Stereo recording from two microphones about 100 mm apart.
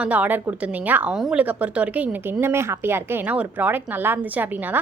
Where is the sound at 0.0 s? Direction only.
15° right (ahead or behind).